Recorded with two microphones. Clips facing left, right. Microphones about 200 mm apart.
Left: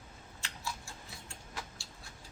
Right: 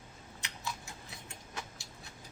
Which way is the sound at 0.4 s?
20° right (ahead or behind).